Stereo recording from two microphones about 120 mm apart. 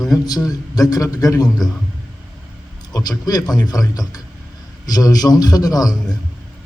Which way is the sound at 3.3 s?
30° left (ahead or behind).